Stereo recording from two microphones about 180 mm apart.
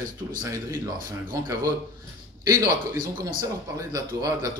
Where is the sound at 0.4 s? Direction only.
15° right (ahead or behind).